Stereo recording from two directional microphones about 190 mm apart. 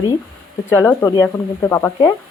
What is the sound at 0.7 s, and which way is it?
Speech, 10° left (ahead or behind).